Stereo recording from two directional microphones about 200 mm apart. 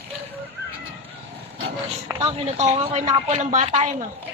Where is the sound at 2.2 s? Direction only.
30° right (ahead or behind).